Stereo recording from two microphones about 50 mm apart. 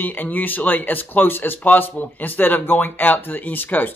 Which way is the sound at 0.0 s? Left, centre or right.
Left.